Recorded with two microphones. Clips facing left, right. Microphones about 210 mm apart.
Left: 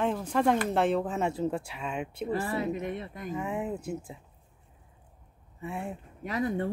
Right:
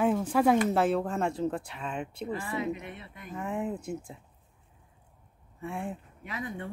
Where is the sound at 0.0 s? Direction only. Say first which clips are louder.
Right 2 dB; 5° right (ahead or behind).